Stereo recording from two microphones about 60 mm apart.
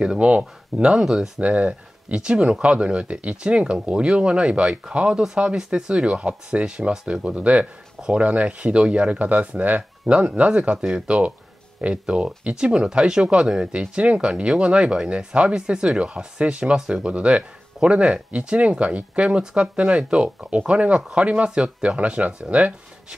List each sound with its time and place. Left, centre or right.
0.0 s speech: centre
1.4 s speech: right
21.5 s speech: centre
21.8 s speech: right